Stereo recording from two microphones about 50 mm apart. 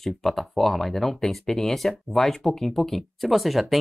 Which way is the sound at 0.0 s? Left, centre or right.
Centre.